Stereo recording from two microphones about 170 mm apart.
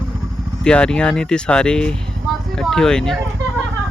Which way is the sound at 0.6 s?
5° left (ahead or behind).